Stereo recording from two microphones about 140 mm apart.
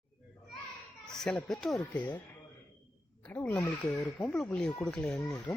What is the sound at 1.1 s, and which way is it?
Speech, 5° left (ahead or behind).